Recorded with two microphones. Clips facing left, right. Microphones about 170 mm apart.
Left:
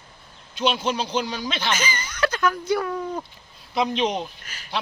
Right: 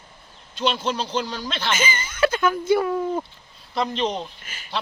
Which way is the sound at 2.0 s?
5° right (ahead or behind).